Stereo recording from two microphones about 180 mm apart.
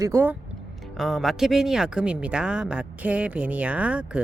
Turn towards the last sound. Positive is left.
turn(degrees=-5)  # may be behind; listen again after turning